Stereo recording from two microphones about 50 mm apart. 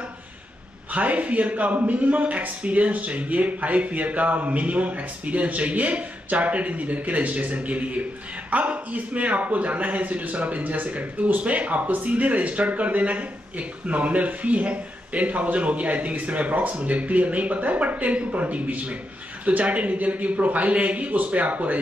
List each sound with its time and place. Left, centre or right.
0.9 s a man's voice: right